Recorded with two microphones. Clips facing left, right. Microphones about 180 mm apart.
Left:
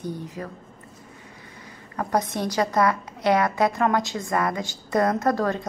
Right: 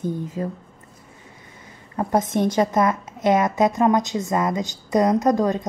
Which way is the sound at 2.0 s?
25° right (ahead or behind).